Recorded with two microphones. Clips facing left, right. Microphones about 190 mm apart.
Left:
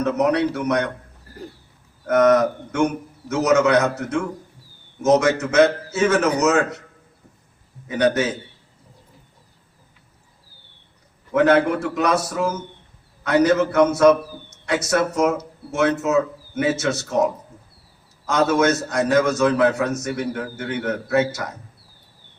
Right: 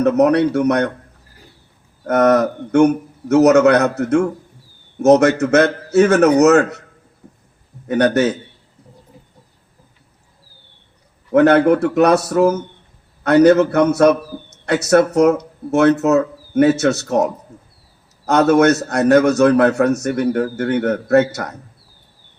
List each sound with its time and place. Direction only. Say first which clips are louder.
0.0 s a man's voice: right 6 dB; 60° right (ahead or behind)
2.0 s a man's voice: right 2 dB; 60° right (ahead or behind)
7.9 s a man's voice: right 5 dB; 60° right (ahead or behind)
11.3 s a man's voice: right 5 dB; 60° right (ahead or behind)
18.3 s a man's voice: right 6 dB; 65° right (ahead or behind)